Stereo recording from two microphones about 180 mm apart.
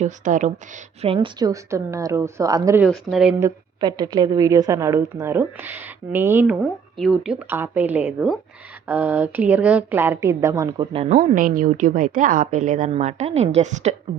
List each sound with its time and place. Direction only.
0.0 s a woman's voice: 45° right (ahead or behind)
1.0 s a woman's voice: 30° right (ahead or behind)
2.8 s speech: 5° right (ahead or behind)
3.4 s a woman's voice: 25° right (ahead or behind)
11.1 s a woman's voice: 45° right (ahead or behind)